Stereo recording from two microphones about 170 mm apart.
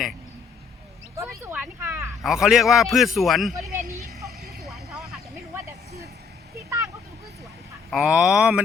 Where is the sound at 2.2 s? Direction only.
Centre (ahead or behind).